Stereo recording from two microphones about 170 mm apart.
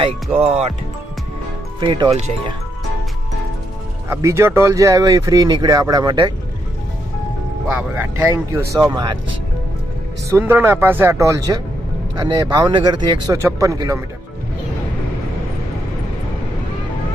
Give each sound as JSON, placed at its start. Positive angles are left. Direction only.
{"t": 0.3, "sound": "speech", "side_deg": -40}
{"t": 1.8, "sound": "speech", "side_deg": -25}
{"t": 4.1, "sound": "speech", "side_deg": -15}
{"t": 7.7, "sound": "speech", "side_deg": -10}
{"t": 8.7, "sound": "speech", "side_deg": -20}
{"t": 10.2, "sound": "speech", "side_deg": -15}